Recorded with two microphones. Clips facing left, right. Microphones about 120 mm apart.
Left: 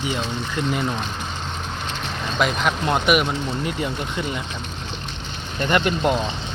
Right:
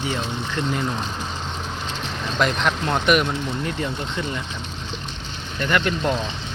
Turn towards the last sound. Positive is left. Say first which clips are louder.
# left 2 dB
turn(degrees=20)  # may be behind; listen again after turning